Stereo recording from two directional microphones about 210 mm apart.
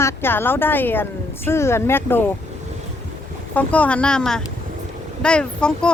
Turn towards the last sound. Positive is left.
turn(degrees=5)  # may be behind; listen again after turning